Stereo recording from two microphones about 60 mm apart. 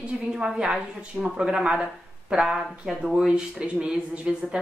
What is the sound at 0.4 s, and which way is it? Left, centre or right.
Speech, centre.